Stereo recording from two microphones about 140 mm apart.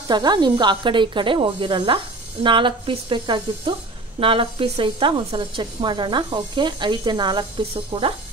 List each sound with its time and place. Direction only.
0.1 s a woman's voice: 30° right (ahead or behind)